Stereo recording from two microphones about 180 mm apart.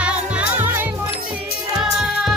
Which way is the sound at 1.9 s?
Centre (ahead or behind).